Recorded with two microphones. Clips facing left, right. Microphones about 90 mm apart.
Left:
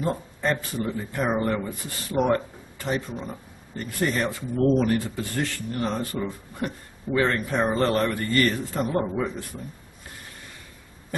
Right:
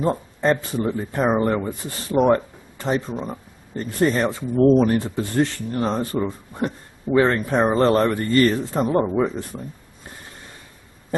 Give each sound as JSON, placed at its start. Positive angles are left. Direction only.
{"t": 0.0, "sound": "speech", "side_deg": -30}